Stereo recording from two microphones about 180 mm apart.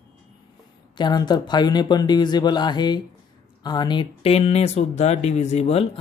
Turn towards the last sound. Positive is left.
turn(degrees=35)  # may be behind; listen again after turning